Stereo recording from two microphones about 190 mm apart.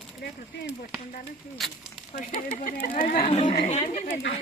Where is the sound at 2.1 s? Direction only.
40° left (ahead or behind).